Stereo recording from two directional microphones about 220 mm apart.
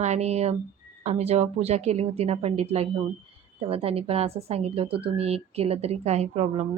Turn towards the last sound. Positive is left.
turn(degrees=-25)  # may be behind; listen again after turning